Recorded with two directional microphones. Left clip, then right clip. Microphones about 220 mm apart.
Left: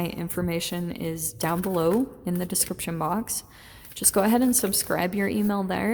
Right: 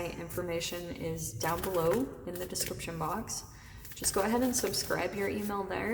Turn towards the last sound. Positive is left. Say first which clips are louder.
# left 7 dB
turn(degrees=50)  # may be behind; listen again after turning